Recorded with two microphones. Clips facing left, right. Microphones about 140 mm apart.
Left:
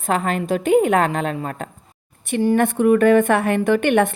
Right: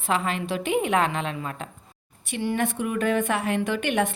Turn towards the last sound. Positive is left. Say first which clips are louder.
# left 8 dB
turn(degrees=55)  # may be behind; listen again after turning